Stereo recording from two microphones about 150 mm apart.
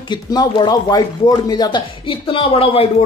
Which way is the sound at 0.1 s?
30° left (ahead or behind).